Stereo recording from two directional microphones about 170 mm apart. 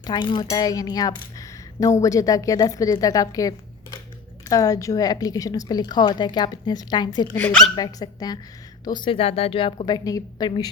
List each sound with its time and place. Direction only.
0.0 s speech: 25° left (ahead or behind)
7.3 s speech: 5° left (ahead or behind)
7.8 s speech: 20° left (ahead or behind)